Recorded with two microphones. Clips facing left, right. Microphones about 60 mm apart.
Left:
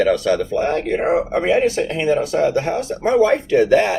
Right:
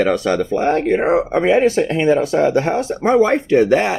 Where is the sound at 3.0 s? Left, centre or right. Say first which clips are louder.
Right 1 dB; right.